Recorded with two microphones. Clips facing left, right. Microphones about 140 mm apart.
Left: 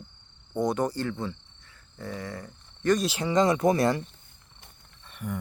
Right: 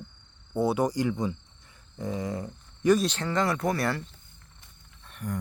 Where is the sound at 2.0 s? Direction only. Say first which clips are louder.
Right 5 dB; 20° right (ahead or behind).